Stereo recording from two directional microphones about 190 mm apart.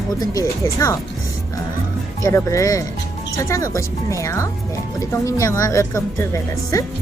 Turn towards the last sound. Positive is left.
turn(degrees=15)  # may be behind; listen again after turning